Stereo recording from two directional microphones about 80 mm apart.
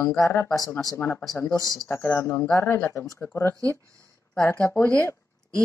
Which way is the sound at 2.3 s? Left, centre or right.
Centre.